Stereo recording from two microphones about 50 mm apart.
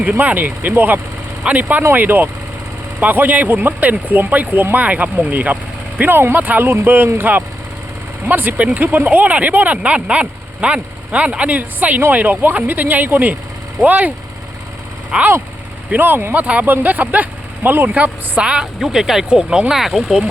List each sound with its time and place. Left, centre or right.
0.0 s speech: right
0.7 s speech: right
1.5 s speech: right
6.0 s speech: right
15.1 s speech: right
16.0 s speech: right
16.3 s speech: right
17.8 s speech: right
18.4 s speech: centre
18.8 s speech: centre
19.7 s speech: centre